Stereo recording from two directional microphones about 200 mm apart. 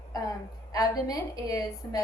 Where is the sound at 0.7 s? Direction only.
20° left (ahead or behind).